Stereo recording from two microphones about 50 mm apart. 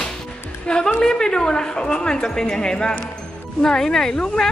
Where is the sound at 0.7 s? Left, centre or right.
Centre.